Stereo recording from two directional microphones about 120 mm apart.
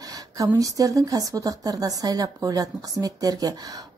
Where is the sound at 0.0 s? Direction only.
30° right (ahead or behind).